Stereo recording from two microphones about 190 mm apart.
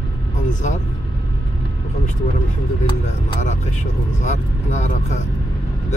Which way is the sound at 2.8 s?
35° left (ahead or behind).